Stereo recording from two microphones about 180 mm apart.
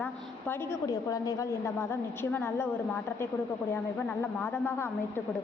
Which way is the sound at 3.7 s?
10° left (ahead or behind).